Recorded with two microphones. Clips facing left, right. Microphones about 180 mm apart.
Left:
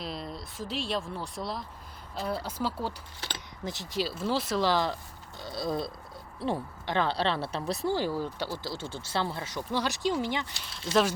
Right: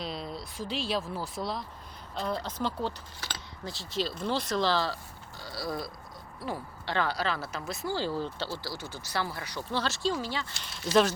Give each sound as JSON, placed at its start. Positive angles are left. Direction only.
{"t": 0.0, "sound": "speech", "side_deg": 0}
{"t": 3.2, "sound": "speech", "side_deg": 20}
{"t": 4.0, "sound": "speech", "side_deg": 5}
{"t": 7.9, "sound": "speech", "side_deg": 15}